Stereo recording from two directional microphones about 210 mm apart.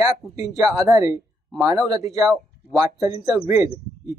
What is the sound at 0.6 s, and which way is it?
Speech, 15° right (ahead or behind).